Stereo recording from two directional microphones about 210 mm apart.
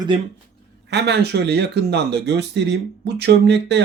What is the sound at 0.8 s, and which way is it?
Speech, 55° right (ahead or behind).